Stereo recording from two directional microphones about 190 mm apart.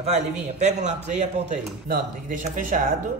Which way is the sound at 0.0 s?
35° right (ahead or behind).